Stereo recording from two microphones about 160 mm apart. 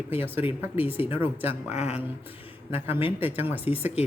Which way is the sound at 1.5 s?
40° left (ahead or behind).